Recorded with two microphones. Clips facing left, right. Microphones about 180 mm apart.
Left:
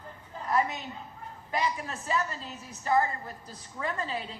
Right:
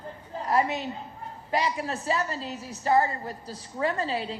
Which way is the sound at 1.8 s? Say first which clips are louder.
Right 3 dB; 35° right (ahead or behind).